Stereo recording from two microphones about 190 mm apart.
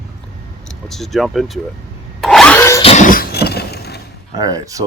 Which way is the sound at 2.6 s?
15° left (ahead or behind).